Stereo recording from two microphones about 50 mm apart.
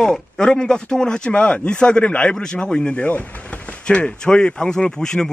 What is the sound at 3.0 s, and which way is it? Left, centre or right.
Speech, left.